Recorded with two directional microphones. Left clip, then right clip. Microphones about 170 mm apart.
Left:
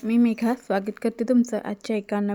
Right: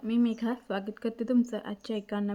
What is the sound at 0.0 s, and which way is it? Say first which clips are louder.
A woman's voice: left 7 dB; 35° left (ahead or behind).